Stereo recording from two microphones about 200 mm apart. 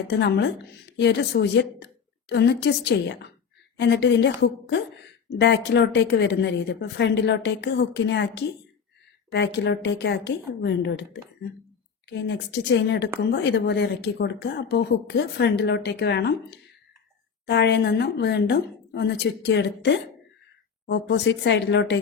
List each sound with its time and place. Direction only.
0.2 s a woman's voice: 60° left (ahead or behind)